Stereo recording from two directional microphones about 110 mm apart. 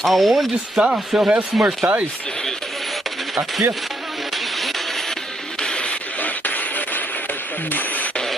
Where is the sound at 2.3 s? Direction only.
5° left (ahead or behind).